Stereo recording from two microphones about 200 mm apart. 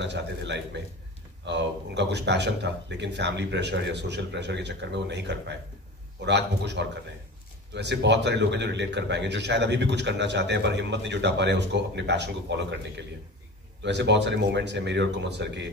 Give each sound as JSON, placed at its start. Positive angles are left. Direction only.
{"t": 0.0, "sound": "speech", "side_deg": -60}